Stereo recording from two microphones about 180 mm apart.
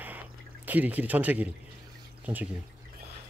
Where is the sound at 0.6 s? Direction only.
10° right (ahead or behind).